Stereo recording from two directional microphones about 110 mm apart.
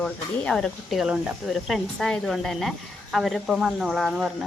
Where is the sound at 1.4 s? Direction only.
Centre (ahead or behind).